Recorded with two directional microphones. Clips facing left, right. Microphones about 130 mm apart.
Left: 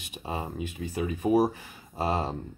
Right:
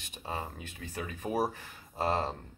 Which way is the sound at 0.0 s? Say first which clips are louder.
Left 4 dB; 5° left (ahead or behind).